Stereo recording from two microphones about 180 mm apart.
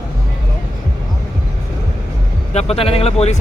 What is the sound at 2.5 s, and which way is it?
Speech, 35° left (ahead or behind).